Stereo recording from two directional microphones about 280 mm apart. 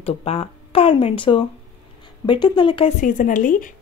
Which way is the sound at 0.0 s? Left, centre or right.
Left.